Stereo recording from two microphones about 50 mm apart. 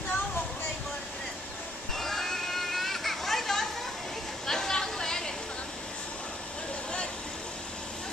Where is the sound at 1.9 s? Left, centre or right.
Centre.